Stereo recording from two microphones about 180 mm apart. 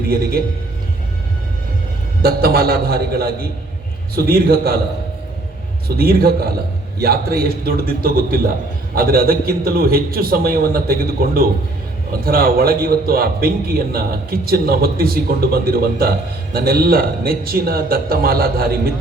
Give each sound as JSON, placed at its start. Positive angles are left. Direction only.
{"t": 0.1, "sound": "a man's voice", "side_deg": -55}
{"t": 2.2, "sound": "a man's voice", "side_deg": -60}
{"t": 6.0, "sound": "a man's voice", "side_deg": -60}